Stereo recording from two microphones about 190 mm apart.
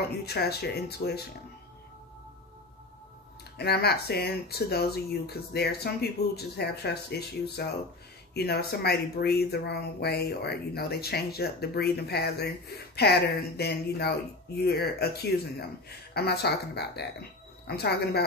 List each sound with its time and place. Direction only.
0.2 s speech: 55° left (ahead or behind)
3.5 s speech: 55° left (ahead or behind)